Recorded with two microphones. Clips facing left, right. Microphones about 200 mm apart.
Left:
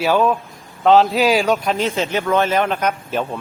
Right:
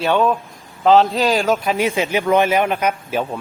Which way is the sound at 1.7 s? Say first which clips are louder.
Right 1 dB; 15° right (ahead or behind).